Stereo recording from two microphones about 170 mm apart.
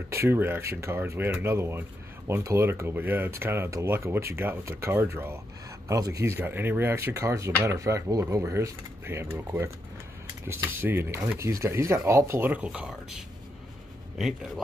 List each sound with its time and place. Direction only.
0.1 s speech: 15° right (ahead or behind)